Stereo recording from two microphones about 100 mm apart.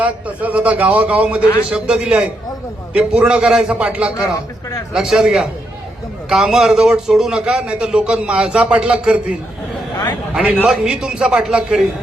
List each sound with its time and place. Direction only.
0.0 s a man's voice: 15° right (ahead or behind)
10.3 s a man's voice: 10° right (ahead or behind)